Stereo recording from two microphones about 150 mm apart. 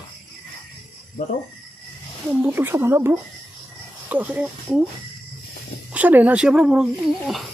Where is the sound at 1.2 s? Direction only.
70° left (ahead or behind).